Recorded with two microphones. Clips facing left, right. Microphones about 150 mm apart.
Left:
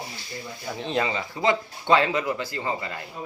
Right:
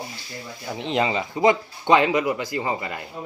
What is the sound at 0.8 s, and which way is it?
Speech, 20° right (ahead or behind).